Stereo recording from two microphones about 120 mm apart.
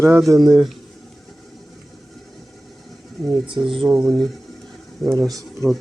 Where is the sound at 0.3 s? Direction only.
35° right (ahead or behind).